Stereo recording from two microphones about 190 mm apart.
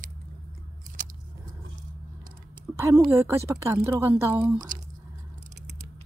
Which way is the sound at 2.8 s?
15° right (ahead or behind).